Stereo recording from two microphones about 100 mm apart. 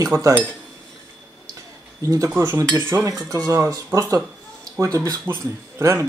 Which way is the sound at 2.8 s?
25° right (ahead or behind).